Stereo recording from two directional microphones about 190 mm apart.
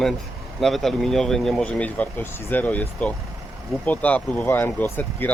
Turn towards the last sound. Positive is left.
turn(degrees=10)  # may be behind; listen again after turning